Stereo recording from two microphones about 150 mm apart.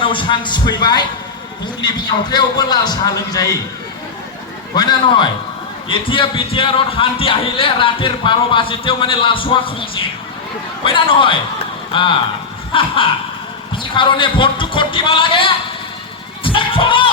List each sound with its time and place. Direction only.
0.0 s a man's voice: 35° left (ahead or behind)
4.7 s a man's voice: 30° left (ahead or behind)
13.9 s speech: 30° left (ahead or behind)
16.4 s music: 35° left (ahead or behind)